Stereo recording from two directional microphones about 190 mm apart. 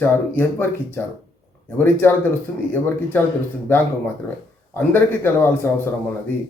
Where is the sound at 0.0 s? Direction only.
10° left (ahead or behind).